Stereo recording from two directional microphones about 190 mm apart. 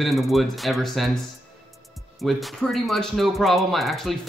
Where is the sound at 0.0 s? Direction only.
Centre (ahead or behind).